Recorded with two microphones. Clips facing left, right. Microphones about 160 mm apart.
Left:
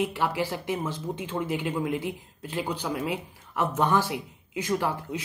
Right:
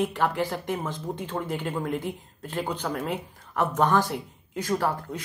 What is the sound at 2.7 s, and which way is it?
Speech, 10° left (ahead or behind).